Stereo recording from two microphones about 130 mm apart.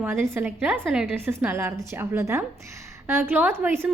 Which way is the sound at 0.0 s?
15° right (ahead or behind).